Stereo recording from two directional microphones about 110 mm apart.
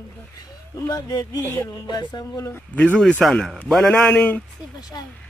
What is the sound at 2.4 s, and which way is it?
Speech, 15° left (ahead or behind).